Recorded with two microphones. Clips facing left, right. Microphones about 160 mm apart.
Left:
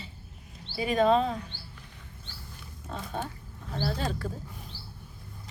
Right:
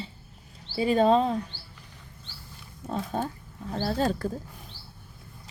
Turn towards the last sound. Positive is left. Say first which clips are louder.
# right 5 dB
turn(degrees=-40)  # may be behind; listen again after turning